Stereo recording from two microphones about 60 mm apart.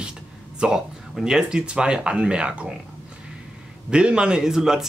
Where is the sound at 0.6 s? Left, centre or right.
Centre.